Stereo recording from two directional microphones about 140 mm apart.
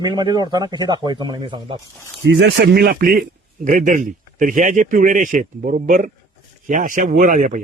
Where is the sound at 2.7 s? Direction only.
90° right.